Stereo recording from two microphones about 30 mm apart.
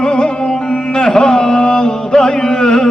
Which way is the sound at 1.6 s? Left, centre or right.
Left.